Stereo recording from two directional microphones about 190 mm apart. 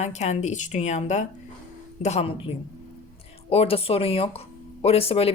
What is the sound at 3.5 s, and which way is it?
Speech, 30° left (ahead or behind).